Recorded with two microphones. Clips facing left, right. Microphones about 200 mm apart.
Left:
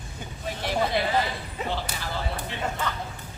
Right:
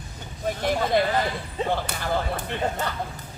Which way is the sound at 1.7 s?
55° right (ahead or behind).